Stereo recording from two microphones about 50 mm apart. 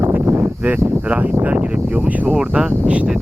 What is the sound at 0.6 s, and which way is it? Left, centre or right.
Speech, right.